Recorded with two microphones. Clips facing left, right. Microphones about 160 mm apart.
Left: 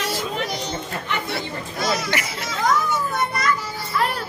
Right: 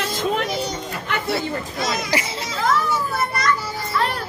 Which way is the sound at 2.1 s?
30° right (ahead or behind).